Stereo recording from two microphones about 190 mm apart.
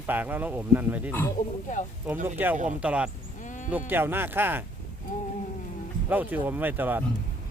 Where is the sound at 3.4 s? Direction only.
40° left (ahead or behind).